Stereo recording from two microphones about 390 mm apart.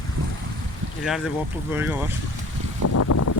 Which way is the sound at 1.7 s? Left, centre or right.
Centre.